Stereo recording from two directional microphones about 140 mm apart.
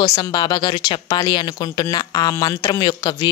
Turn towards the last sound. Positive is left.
turn(degrees=30)  # may be behind; listen again after turning